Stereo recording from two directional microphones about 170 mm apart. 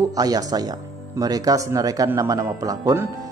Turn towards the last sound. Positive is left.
turn(degrees=-20)  # may be behind; listen again after turning